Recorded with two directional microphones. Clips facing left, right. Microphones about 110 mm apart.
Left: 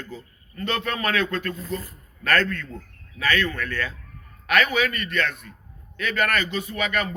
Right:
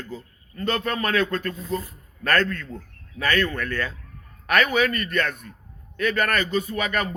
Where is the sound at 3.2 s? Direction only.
40° right (ahead or behind).